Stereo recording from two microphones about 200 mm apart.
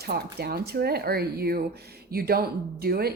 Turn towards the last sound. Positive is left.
turn(degrees=-50)  # may be behind; listen again after turning